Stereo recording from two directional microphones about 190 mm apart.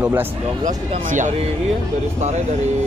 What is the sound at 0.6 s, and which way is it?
Speech, 40° right (ahead or behind).